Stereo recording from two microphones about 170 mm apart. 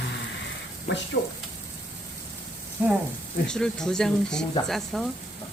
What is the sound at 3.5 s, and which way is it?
A man's voice, 5° left (ahead or behind).